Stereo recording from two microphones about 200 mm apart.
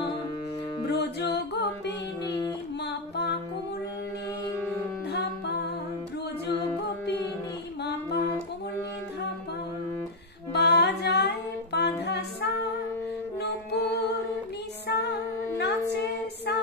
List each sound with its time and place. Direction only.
0.9 s music: 55° left (ahead or behind)
7.8 s music: 55° left (ahead or behind)
10.5 s music: 55° left (ahead or behind)